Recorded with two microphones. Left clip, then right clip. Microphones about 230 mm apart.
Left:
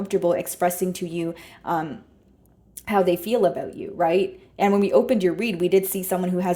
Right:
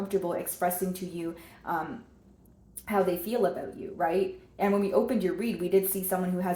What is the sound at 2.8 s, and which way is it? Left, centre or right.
A woman's voice, left.